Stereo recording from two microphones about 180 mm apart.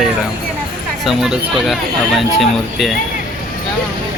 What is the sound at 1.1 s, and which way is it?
Speech, centre (ahead or behind).